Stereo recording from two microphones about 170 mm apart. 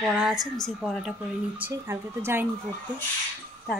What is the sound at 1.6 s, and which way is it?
Speech, 15° right (ahead or behind).